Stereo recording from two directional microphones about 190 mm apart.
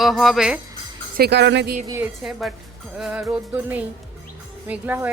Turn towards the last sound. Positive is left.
turn(degrees=-10)  # may be behind; listen again after turning